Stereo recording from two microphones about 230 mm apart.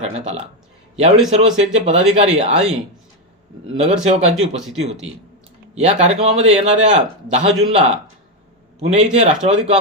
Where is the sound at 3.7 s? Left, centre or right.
Right.